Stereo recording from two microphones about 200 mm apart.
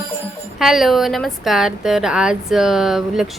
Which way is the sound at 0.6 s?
Centre (ahead or behind).